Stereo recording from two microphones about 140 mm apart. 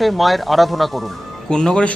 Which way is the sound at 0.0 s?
Centre (ahead or behind).